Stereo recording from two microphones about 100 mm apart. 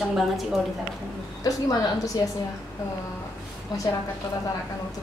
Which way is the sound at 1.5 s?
40° left (ahead or behind).